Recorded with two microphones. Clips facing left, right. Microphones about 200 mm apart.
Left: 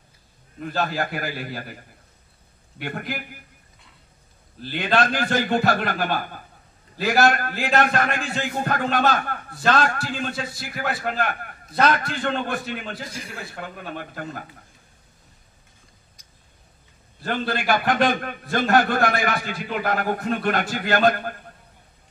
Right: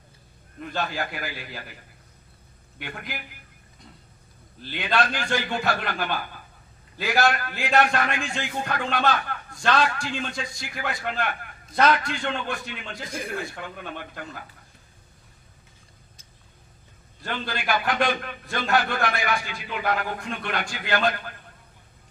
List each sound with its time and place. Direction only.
0.6 s a man's voice: centre (ahead or behind)
0.8 s a man's voice: 45° left (ahead or behind)
2.8 s a man's voice: 50° left (ahead or behind)
4.7 s a man's voice: 45° left (ahead or behind)
10.3 s a man's voice: 5° left (ahead or behind)
11.1 s a man's voice: 45° left (ahead or behind)
13.0 s a man's voice: 55° right (ahead or behind)
17.3 s a man's voice: 45° left (ahead or behind)